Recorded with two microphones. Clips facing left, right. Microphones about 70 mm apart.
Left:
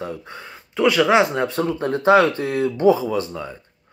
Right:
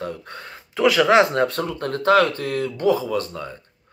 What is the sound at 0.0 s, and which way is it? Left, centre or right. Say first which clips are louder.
Speech: even; centre.